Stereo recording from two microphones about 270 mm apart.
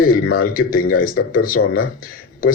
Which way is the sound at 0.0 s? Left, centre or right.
Left.